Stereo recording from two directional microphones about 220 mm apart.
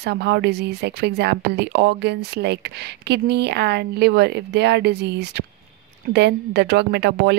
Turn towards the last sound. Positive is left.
turn(degrees=-50)  # may be behind; listen again after turning